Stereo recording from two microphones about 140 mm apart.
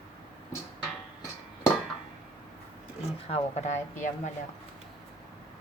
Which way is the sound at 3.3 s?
55° left (ahead or behind).